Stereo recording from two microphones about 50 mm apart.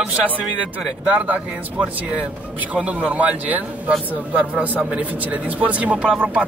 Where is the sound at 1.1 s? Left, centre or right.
Right.